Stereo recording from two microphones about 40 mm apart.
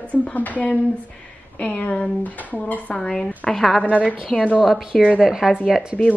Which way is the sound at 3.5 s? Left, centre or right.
Centre.